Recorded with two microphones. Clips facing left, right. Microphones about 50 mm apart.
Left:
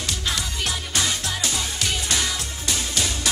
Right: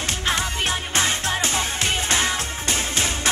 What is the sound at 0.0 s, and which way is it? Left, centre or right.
Music, right.